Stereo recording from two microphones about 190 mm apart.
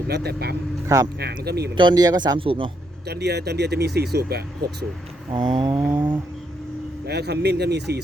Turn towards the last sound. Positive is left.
turn(degrees=-60)  # may be behind; listen again after turning